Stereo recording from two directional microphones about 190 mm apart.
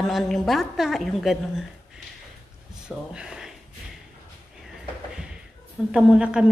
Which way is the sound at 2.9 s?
5° right (ahead or behind).